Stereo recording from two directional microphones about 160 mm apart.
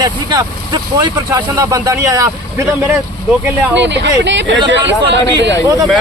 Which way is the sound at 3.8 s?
90° right.